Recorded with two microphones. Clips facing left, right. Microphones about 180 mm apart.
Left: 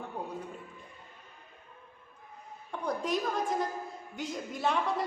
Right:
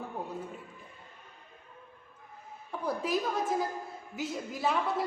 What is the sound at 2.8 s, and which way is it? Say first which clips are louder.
A woman's voice: even; 5° right (ahead or behind).